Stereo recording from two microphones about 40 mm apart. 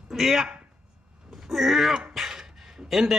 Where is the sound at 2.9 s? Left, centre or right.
Centre.